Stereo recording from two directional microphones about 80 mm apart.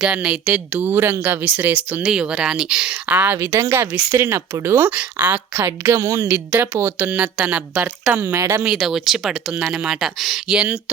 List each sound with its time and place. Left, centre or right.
0.0 s speech: centre
2.0 s speech: centre
3.3 s speech: right
4.9 s speech: right
6.3 s speech: right
7.3 s speech: centre; by 8.6 s right
8.6 s speech: centre